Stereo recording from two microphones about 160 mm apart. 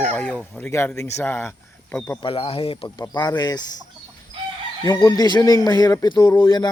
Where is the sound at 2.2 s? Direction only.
35° left (ahead or behind).